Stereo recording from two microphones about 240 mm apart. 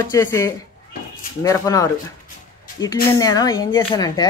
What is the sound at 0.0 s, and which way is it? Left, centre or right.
Speech, centre.